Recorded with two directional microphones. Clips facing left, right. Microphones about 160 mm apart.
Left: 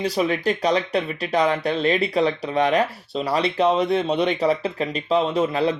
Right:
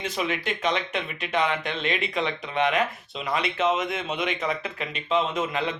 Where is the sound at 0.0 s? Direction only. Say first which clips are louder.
Left 7 dB; 35° left (ahead or behind).